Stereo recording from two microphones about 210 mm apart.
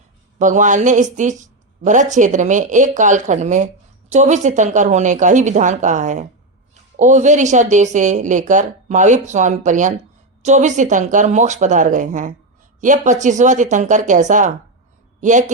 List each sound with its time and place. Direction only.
0.3 s speech: 35° right (ahead or behind)